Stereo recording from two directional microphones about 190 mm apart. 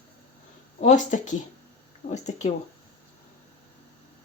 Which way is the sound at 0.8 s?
40° left (ahead or behind).